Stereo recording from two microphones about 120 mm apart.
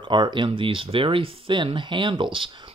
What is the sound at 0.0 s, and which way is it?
Speech, 40° right (ahead or behind).